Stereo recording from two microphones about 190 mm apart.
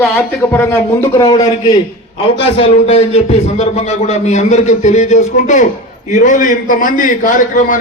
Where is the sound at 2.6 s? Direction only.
30° left (ahead or behind).